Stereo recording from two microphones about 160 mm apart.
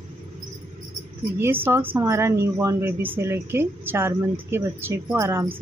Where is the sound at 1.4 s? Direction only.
15° right (ahead or behind).